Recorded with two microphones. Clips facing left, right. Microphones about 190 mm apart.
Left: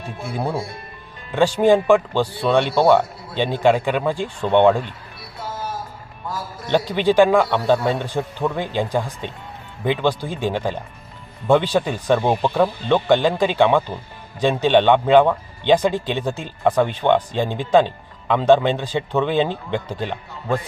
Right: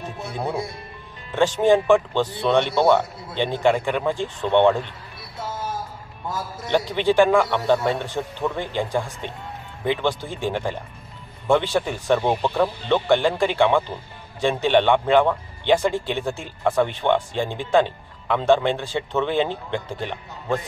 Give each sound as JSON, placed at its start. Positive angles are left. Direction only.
{"t": 1.3, "sound": "a man's voice", "side_deg": 10}
{"t": 5.4, "sound": "a sound", "side_deg": -25}
{"t": 6.9, "sound": "a man's voice", "side_deg": 15}